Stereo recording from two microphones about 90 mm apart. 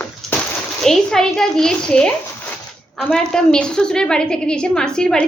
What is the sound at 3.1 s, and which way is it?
A woman's voice, 5° left (ahead or behind).